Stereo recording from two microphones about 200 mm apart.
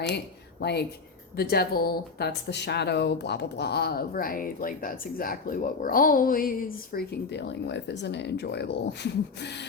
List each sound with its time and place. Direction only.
0.6 s speech: 55° left (ahead or behind)